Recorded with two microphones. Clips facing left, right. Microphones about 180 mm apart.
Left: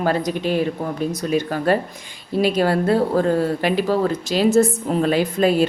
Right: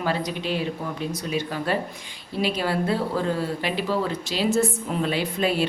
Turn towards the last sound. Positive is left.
turn(degrees=45)  # may be behind; listen again after turning